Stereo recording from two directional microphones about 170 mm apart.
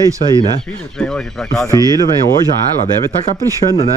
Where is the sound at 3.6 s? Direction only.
20° left (ahead or behind).